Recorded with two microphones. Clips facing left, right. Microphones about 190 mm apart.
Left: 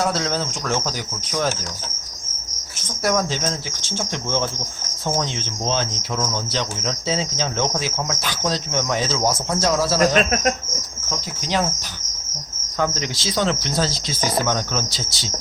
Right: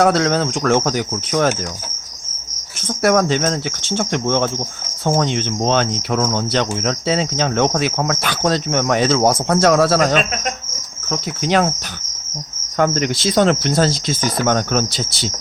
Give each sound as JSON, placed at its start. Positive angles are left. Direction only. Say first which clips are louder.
{"t": 0.0, "sound": "cricket", "louder": "right 8 dB", "side_deg": -60}
{"t": 3.0, "sound": "cricket", "louder": "right 6 dB", "side_deg": -65}
{"t": 12.7, "sound": "cricket", "louder": "right 6 dB", "side_deg": -60}